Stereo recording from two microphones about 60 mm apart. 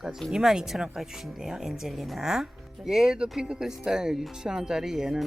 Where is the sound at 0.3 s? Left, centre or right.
Centre.